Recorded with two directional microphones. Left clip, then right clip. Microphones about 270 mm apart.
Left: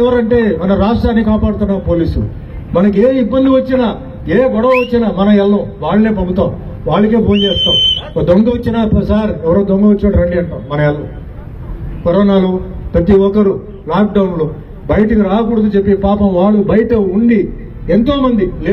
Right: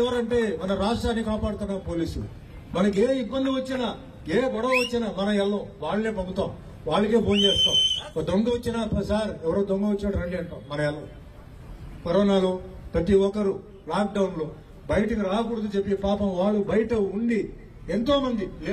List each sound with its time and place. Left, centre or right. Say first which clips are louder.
0.0 s a man's voice: left 13 dB; right
12.0 s a man's voice: left 11 dB; right